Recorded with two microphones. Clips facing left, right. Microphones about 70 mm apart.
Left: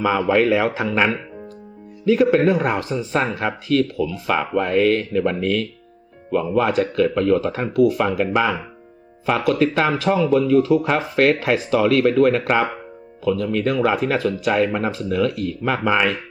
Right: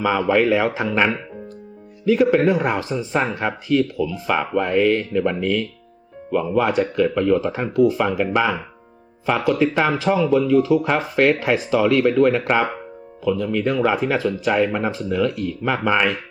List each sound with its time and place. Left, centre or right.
0.0 s speech: centre
7.7 s speech: centre
7.9 s speech: centre